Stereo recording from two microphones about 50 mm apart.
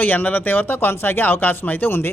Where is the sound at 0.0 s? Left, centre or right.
Left.